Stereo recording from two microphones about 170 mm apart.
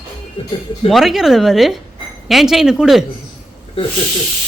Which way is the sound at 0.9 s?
Centre (ahead or behind).